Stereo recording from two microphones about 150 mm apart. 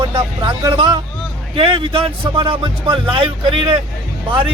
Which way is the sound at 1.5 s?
35° right (ahead or behind).